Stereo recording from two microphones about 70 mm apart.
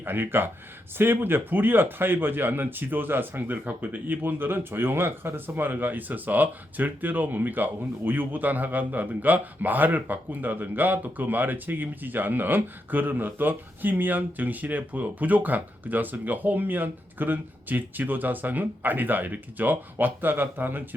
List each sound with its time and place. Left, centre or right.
0.0 s speech: right